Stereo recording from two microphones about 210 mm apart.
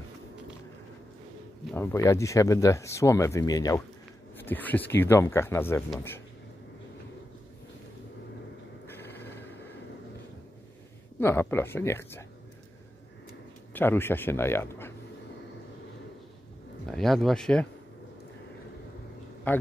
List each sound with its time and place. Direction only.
1.7 s speech: 10° left (ahead or behind)
8.8 s a sound: 10° left (ahead or behind)
11.1 s speech: 10° left (ahead or behind)
13.7 s speech: 10° left (ahead or behind)
16.8 s speech: centre (ahead or behind)
19.5 s speech: 10° left (ahead or behind)